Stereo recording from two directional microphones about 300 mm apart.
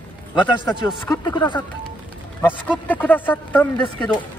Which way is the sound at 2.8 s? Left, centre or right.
Centre.